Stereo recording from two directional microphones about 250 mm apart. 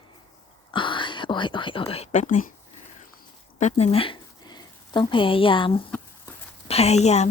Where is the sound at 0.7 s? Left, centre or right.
Centre.